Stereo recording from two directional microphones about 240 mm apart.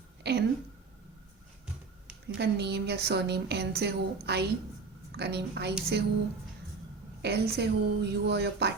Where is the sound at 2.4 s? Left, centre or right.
Right.